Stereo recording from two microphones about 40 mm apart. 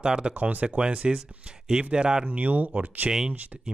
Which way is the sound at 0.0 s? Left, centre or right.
Right.